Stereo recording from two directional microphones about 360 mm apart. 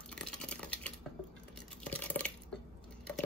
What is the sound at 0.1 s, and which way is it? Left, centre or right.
Typing, centre.